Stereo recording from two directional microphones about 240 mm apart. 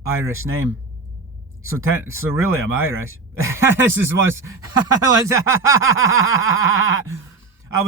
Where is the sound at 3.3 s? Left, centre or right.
Centre.